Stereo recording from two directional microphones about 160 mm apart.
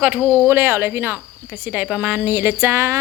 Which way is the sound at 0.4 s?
15° right (ahead or behind).